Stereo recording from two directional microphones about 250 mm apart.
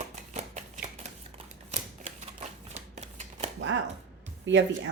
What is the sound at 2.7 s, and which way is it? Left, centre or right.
Shuffling cards, right.